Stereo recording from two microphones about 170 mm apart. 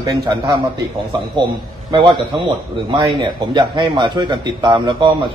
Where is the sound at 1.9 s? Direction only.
30° right (ahead or behind).